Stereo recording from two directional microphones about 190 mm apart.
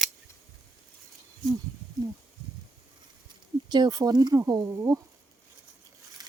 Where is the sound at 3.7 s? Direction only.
20° right (ahead or behind).